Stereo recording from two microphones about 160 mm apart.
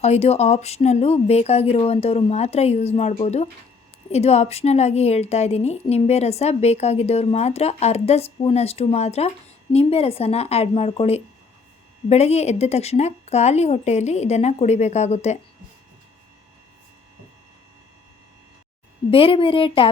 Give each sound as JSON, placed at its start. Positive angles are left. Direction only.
{"t": 0.0, "sound": "a woman's voice", "side_deg": 40}
{"t": 19.1, "sound": "a woman's voice", "side_deg": 35}